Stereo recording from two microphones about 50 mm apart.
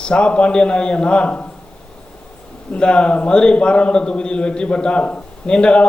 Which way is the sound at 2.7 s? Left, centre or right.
Left.